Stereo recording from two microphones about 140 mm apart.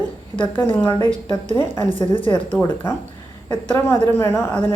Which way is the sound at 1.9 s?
40° left (ahead or behind).